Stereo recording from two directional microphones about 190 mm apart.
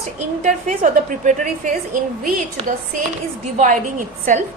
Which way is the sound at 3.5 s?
45° right (ahead or behind).